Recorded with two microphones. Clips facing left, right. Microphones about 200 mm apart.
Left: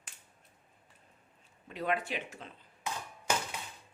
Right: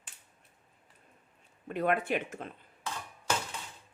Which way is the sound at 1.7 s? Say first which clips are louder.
Right 5 dB; 55° right (ahead or behind).